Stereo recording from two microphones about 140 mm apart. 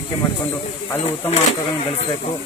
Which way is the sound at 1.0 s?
50° left (ahead or behind).